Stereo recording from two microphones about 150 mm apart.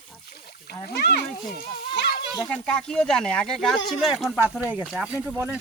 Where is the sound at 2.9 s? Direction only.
5° left (ahead or behind).